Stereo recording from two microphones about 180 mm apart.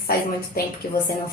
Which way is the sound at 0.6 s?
55° left (ahead or behind).